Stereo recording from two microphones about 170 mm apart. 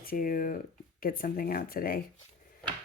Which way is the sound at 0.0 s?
60° left (ahead or behind).